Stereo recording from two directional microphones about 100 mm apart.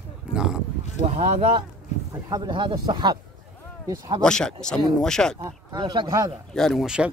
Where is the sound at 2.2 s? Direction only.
40° right (ahead or behind).